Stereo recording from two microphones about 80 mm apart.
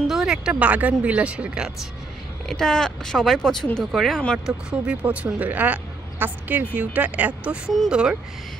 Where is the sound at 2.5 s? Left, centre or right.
Centre.